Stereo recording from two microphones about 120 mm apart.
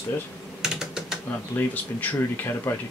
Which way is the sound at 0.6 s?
5° right (ahead or behind).